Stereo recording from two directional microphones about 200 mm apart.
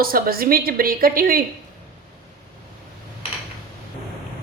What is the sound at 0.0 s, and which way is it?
A woman's voice, 45° right (ahead or behind).